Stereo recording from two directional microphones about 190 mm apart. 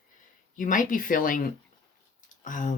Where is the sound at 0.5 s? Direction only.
45° left (ahead or behind).